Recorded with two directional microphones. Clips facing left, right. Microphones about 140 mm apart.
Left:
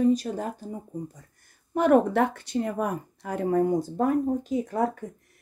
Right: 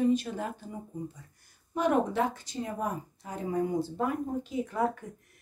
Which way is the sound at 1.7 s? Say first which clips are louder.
Left 7 dB; 55° left (ahead or behind).